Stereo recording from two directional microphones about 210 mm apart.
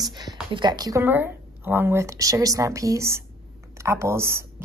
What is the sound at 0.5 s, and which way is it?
A woman's voice, 20° right (ahead or behind).